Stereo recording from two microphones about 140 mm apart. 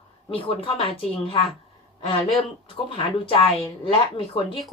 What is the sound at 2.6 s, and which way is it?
A woman's voice, 40° left (ahead or behind).